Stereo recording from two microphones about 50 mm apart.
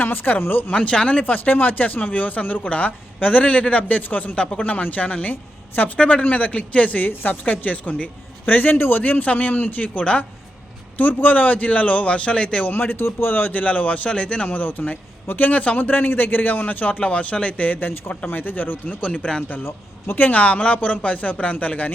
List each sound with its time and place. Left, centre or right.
0.0 s a man's voice: left
0.7 s speech: centre
1.2 s a man's voice: left
6.0 s a man's voice: left
8.4 s a man's voice: left
12.7 s a man's voice: left
17.7 s a man's voice: left
19.1 s speech: left
19.6 s speech: left